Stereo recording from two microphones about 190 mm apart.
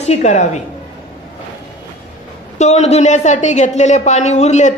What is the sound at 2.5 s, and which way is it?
A man's voice, 35° left (ahead or behind).